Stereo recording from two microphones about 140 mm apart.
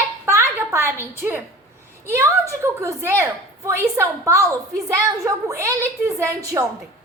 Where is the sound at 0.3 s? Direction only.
20° right (ahead or behind).